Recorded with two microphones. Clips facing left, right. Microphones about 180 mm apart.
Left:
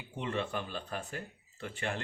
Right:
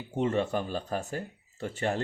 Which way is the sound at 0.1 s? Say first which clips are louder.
Right 8 dB; 40° right (ahead or behind).